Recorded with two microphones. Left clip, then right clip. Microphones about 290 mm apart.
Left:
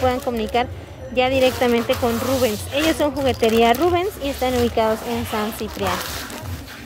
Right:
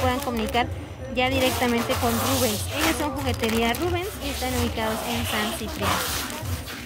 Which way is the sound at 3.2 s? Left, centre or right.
Centre.